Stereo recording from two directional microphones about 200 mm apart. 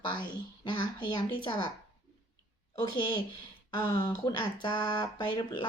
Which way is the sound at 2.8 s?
20° left (ahead or behind).